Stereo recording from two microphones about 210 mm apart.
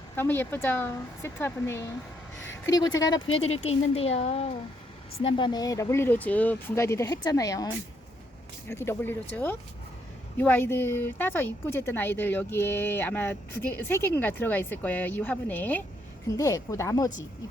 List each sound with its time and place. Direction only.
0.2 s speech: 10° left (ahead or behind)
3.3 s speech: 30° left (ahead or behind)
8.7 s speech: 10° left (ahead or behind)